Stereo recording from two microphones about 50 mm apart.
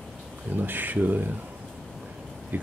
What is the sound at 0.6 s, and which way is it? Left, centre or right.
Speech, right.